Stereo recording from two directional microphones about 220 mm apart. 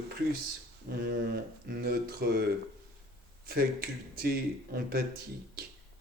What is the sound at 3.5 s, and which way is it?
Speech, 45° right (ahead or behind).